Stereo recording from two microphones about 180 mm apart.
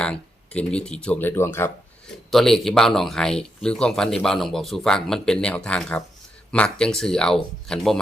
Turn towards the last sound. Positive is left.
turn(degrees=5)  # may be behind; listen again after turning